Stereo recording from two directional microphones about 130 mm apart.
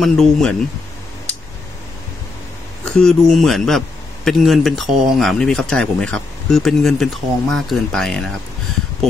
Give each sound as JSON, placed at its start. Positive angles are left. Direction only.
{"t": 0.0, "sound": "a man's voice", "side_deg": 5}
{"t": 2.8, "sound": "a man's voice", "side_deg": 5}